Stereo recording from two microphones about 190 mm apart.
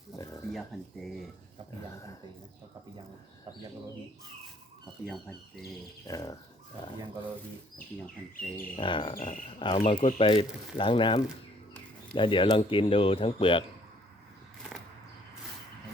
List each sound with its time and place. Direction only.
0.2 s a sound: 20° left (ahead or behind)
0.5 s speech: centre (ahead or behind)
5.0 s speech: centre (ahead or behind)
6.1 s speech: 20° left (ahead or behind)
8.7 s speech: 25° left (ahead or behind)